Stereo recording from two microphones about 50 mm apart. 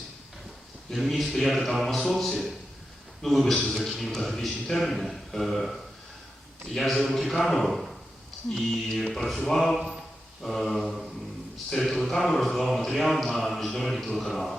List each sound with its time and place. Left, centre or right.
0.9 s a man's voice: centre
6.7 s a man's voice: centre